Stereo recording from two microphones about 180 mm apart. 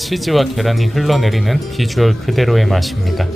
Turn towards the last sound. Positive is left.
turn(degrees=0)  # may be behind; listen again after turning